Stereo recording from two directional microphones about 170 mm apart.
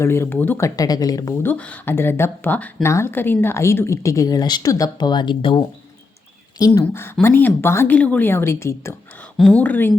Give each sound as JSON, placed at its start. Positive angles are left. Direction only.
{"t": 0.0, "sound": "speech", "side_deg": 15}
{"t": 6.8, "sound": "speech", "side_deg": 15}